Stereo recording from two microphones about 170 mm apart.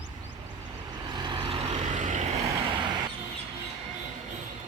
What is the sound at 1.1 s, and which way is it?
Vehicle, 25° right (ahead or behind).